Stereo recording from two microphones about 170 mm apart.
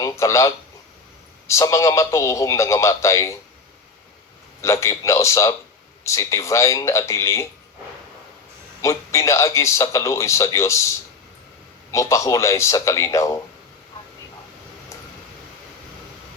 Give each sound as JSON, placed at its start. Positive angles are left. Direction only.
{"t": 0.0, "sound": "speech", "side_deg": 20}
{"t": 4.6, "sound": "speech", "side_deg": 15}
{"t": 8.8, "sound": "speech", "side_deg": 15}